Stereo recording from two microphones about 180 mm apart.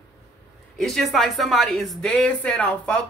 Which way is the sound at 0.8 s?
Centre (ahead or behind).